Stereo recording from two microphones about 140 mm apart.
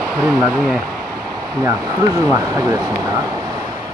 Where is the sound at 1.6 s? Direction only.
25° right (ahead or behind).